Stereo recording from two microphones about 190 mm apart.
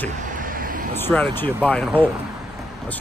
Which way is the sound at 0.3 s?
45° right (ahead or behind).